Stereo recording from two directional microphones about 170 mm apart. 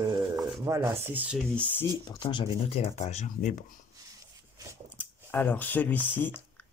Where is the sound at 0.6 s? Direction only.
15° right (ahead or behind).